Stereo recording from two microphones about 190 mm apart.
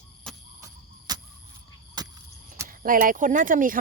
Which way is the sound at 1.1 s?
20° right (ahead or behind).